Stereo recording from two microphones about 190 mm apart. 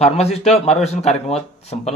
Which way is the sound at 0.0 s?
35° left (ahead or behind).